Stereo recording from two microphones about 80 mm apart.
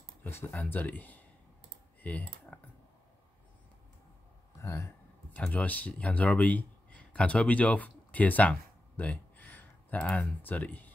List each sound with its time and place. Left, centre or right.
0.2 s speech: left
2.0 s typing: centre
4.6 s a sound: left
5.5 s speech: centre